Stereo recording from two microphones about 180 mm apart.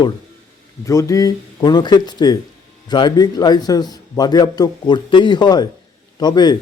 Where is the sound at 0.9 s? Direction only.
15° left (ahead or behind).